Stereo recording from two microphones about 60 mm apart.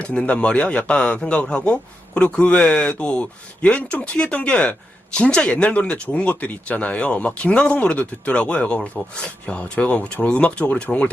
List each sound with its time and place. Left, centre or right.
0.0 s speech: centre